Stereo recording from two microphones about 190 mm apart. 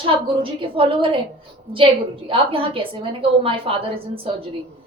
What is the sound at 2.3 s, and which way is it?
A woman's voice, 30° right (ahead or behind).